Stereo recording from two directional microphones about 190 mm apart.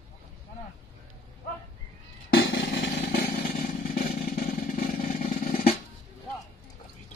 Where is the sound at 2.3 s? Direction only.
80° left; by 4.0 s 55° left (ahead or behind).